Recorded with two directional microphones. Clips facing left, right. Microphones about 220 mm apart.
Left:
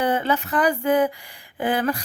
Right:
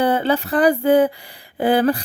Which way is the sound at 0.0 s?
35° right (ahead or behind).